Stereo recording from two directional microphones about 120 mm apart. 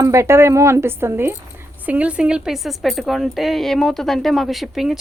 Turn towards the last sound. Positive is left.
turn(degrees=0)  # may be behind; listen again after turning